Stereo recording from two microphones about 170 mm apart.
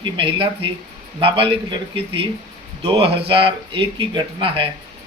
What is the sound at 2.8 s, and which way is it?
Speech, 30° right (ahead or behind).